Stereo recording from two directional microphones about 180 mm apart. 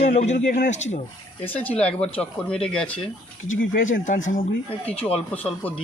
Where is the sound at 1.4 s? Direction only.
10° left (ahead or behind).